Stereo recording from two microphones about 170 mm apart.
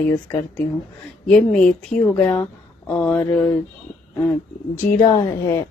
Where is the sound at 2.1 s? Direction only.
10° left (ahead or behind).